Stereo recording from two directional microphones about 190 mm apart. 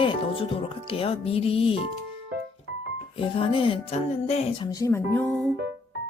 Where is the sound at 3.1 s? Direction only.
30° left (ahead or behind).